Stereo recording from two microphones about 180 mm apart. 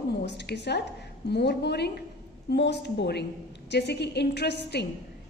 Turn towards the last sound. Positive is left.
turn(degrees=70)  # may be behind; listen again after turning